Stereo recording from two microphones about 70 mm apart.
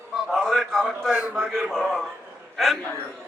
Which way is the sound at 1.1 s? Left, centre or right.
Centre.